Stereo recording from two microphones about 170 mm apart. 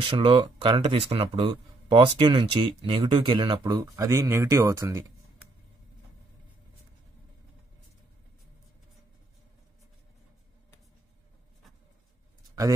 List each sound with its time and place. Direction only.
0.0 s speech: 30° right (ahead or behind)